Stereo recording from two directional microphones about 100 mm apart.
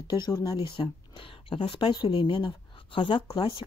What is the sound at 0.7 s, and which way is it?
Speech, 55° left (ahead or behind).